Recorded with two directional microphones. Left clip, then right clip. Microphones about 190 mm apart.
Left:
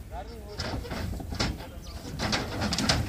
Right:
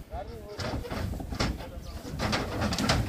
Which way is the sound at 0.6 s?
Centre (ahead or behind).